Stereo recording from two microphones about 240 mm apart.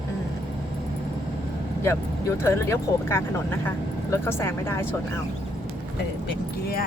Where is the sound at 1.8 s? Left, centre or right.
Centre.